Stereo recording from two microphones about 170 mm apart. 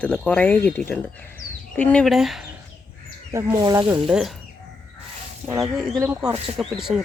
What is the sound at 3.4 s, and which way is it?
Speech, 20° right (ahead or behind).